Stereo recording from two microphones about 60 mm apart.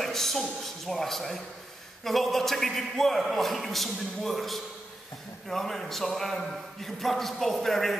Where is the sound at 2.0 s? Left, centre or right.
Centre.